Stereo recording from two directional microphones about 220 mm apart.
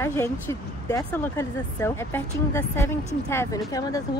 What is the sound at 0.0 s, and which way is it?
Speech, 15° left (ahead or behind).